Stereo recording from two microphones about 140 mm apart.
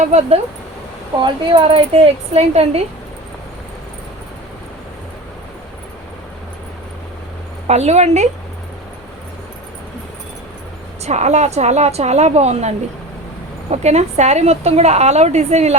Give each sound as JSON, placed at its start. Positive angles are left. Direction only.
{"t": 0.0, "sound": "a woman's voice", "side_deg": -50}
{"t": 1.2, "sound": "speech", "side_deg": -35}
{"t": 2.3, "sound": "a woman's voice", "side_deg": -50}
{"t": 7.7, "sound": "a woman's voice", "side_deg": -50}
{"t": 11.0, "sound": "a woman's voice", "side_deg": -55}